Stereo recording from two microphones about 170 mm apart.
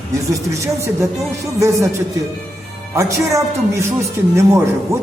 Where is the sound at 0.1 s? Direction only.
15° right (ahead or behind).